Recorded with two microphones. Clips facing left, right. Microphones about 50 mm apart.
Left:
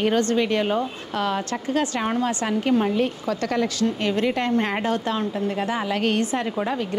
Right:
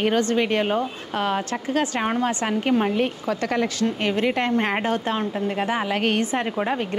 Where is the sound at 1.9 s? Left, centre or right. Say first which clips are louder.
Right 1 dB; right.